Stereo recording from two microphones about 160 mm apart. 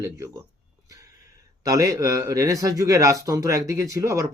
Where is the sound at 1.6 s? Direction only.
20° right (ahead or behind).